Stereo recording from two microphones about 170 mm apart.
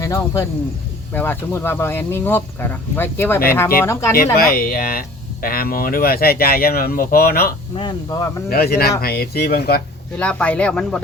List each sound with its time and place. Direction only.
0.0 s speech: 15° left (ahead or behind)
4.4 s speech: 60° left (ahead or behind)
7.8 s speech: 25° left (ahead or behind)
8.4 s speech: 65° left (ahead or behind)
10.2 s speech: 5° left (ahead or behind)